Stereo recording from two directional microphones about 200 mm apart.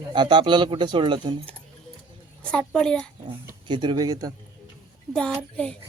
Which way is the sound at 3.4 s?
20° right (ahead or behind).